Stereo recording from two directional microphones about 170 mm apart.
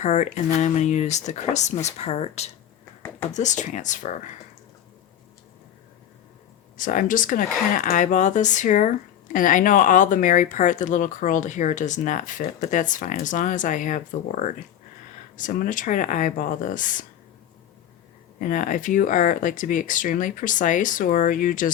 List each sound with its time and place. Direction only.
0.0 s speech: 45° left (ahead or behind)
6.7 s speech: 50° left (ahead or behind)
18.3 s speech: 50° left (ahead or behind)